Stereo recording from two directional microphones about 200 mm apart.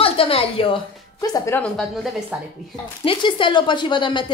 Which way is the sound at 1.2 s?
15° left (ahead or behind).